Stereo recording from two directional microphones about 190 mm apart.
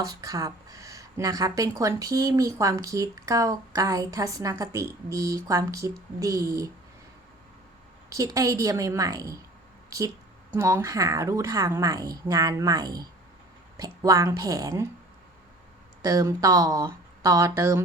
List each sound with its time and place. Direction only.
0.0 s speech: 20° right (ahead or behind)
8.1 s speech: 20° right (ahead or behind)
10.5 s speech: 15° right (ahead or behind)
16.0 s speech: 20° right (ahead or behind)